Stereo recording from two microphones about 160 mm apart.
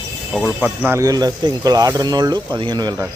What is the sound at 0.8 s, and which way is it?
Speech, 15° right (ahead or behind).